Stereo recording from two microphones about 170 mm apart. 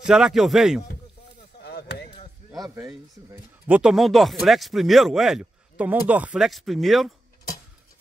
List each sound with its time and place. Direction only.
0.0 s speech: 5° right (ahead or behind)
1.6 s chop: 75° left (ahead or behind)
3.3 s speech: 10° right (ahead or behind)